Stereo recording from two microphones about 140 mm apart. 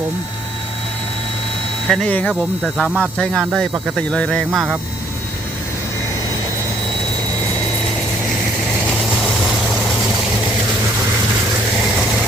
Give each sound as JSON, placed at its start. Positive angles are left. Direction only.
{"t": 1.9, "sound": "speech", "side_deg": 5}